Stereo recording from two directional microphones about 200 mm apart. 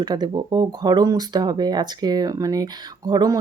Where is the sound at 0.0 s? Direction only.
20° right (ahead or behind).